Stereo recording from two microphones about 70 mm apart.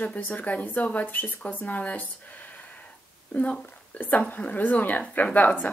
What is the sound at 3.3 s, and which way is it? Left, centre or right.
Speech, left.